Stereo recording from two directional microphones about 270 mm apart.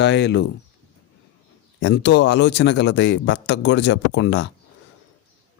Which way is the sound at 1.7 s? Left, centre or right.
Left.